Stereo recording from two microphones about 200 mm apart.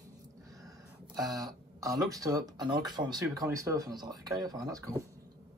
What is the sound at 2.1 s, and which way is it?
Speech, 15° right (ahead or behind).